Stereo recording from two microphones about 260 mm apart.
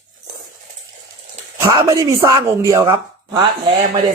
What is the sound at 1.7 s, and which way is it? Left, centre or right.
Speech, centre.